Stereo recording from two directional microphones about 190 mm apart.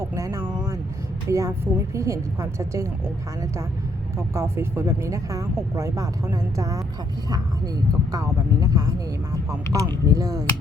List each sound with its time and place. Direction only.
0.0 s vehicle: 15° right (ahead or behind)
1.3 s speech: 15° right (ahead or behind)
4.4 s speech: 15° right (ahead or behind)
8.6 s speech: 20° right (ahead or behind)